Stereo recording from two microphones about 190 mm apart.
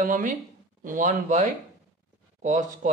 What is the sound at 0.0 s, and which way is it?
Speech, 45° right (ahead or behind).